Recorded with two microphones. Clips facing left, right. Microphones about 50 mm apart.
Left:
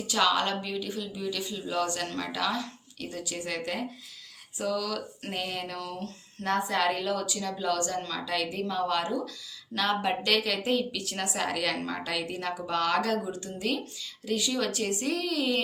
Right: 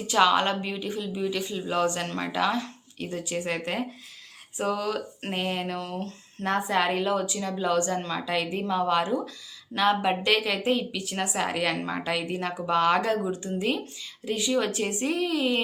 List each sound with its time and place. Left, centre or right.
0.1 s a woman's voice: right